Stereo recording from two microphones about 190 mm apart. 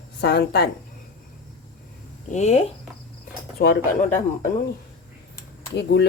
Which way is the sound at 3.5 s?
55° left (ahead or behind).